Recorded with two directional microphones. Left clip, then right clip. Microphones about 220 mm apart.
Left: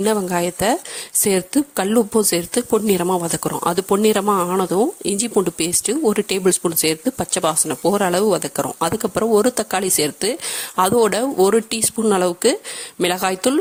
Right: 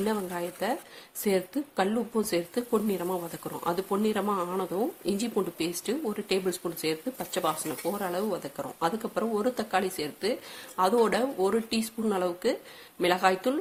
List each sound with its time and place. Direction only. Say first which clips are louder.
0.0 s speech: left 12 dB; 45° left (ahead or behind)